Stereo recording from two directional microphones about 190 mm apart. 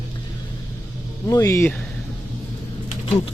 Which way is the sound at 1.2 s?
15° left (ahead or behind).